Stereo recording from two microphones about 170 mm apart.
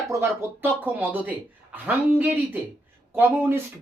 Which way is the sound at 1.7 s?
10° right (ahead or behind).